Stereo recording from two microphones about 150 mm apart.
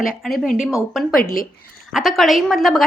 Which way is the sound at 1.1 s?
70° left (ahead or behind).